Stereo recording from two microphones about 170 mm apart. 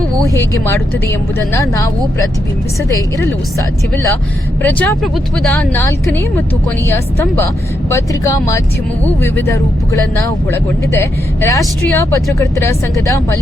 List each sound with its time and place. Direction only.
0.3 s a woman's voice: 15° left (ahead or behind)
2.9 s a woman's voice: 20° left (ahead or behind)